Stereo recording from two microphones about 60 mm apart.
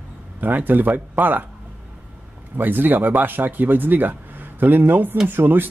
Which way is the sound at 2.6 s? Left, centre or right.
Right.